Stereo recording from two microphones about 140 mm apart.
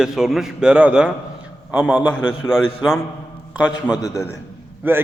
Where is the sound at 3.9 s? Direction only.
25° left (ahead or behind).